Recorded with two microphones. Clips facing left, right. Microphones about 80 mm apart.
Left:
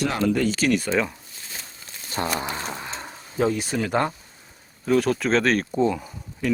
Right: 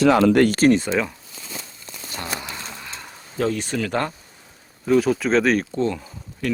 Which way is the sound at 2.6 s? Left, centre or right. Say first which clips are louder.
Left 4 dB; left.